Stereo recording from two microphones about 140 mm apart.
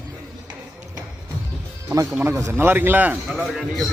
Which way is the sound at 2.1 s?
15° right (ahead or behind).